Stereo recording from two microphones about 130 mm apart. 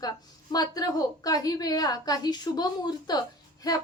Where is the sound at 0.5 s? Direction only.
30° left (ahead or behind).